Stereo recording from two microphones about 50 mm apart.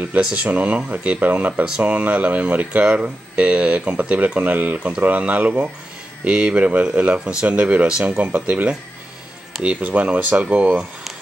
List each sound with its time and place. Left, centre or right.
0.2 s speech: right
7.4 s speech: right